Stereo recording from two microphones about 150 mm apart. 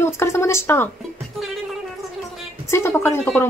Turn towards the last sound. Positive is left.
turn(degrees=15)  # may be behind; listen again after turning